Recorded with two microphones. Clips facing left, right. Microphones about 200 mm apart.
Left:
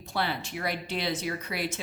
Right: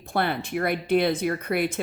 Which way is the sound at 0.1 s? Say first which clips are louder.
Right 6 dB; 55° right (ahead or behind).